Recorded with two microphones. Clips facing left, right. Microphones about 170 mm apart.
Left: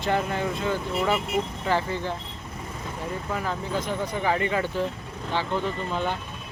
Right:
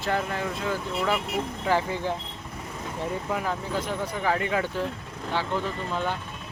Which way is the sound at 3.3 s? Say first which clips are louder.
Even; 10° right (ahead or behind).